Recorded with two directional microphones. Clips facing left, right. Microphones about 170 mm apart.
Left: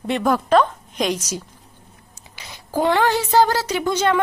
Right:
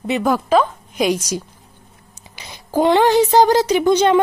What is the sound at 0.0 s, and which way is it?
A woman's voice, centre (ahead or behind).